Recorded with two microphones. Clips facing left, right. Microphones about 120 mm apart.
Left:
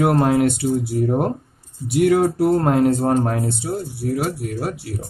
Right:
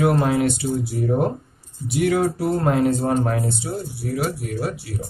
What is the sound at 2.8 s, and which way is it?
Speech, 40° left (ahead or behind).